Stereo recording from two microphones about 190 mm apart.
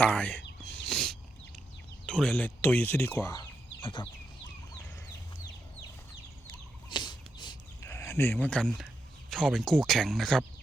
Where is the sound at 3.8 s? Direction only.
25° left (ahead or behind).